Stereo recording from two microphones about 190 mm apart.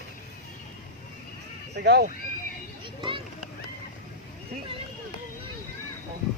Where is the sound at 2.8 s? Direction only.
25° right (ahead or behind).